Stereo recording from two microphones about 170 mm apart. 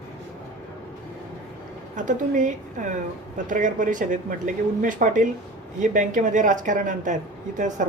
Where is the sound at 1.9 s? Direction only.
50° right (ahead or behind).